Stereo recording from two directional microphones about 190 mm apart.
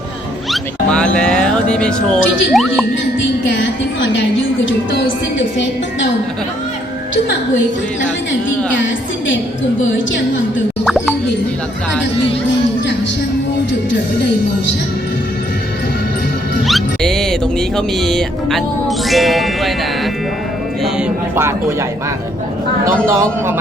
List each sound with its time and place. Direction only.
0.5 s speech: 5° left (ahead or behind)
3.4 s music: 75° left (ahead or behind)
8.3 s a woman's voice: 75° left (ahead or behind)
10.8 s plop: 5° right (ahead or behind)
16.6 s music: centre (ahead or behind)
23.0 s a man's voice: 15° right (ahead or behind)